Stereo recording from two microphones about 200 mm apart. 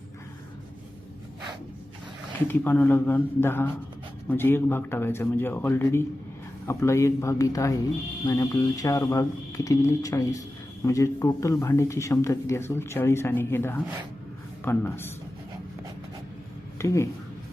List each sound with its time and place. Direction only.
2.5 s a man's voice: 10° left (ahead or behind)
16.7 s speech: 15° left (ahead or behind)